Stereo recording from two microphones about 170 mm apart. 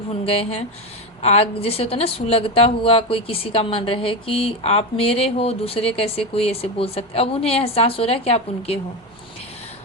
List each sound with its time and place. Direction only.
0.1 s speech: 35° left (ahead or behind)